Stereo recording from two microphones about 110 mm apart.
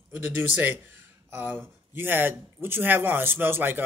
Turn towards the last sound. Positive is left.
turn(degrees=-20)  # may be behind; listen again after turning